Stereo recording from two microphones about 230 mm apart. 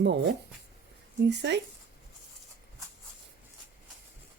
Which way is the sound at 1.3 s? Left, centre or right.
Right.